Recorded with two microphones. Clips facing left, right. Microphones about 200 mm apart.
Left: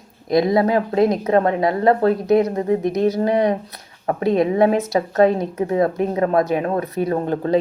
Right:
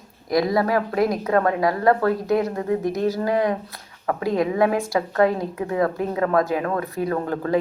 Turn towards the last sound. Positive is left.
turn(degrees=25)  # may be behind; listen again after turning